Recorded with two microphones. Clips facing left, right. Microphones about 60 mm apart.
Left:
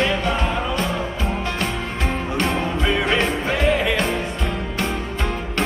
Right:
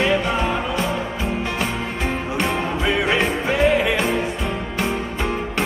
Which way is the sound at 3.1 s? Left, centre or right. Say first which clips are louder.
Right 1 dB; centre.